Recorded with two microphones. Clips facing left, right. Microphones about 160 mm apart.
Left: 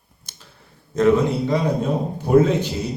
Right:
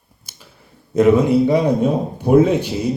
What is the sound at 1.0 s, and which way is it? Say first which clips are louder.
A man's voice: right 4 dB; 10° right (ahead or behind).